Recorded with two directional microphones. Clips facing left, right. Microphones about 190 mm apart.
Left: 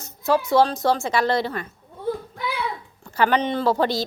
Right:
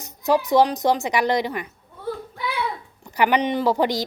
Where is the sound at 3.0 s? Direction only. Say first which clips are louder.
Right 1 dB; 15° right (ahead or behind).